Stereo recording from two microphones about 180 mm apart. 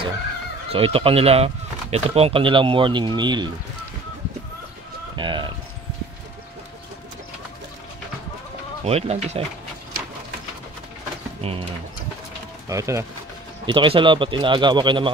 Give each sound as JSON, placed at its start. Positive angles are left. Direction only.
{"t": 0.7, "sound": "speech", "side_deg": -30}
{"t": 5.1, "sound": "speech", "side_deg": -25}
{"t": 8.8, "sound": "speech", "side_deg": -35}
{"t": 11.4, "sound": "speech", "side_deg": -35}
{"t": 12.6, "sound": "speech", "side_deg": -15}
{"t": 13.7, "sound": "speech", "side_deg": -30}